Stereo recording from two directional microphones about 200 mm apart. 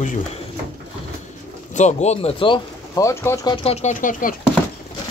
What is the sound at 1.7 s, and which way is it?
Speech, 35° left (ahead or behind).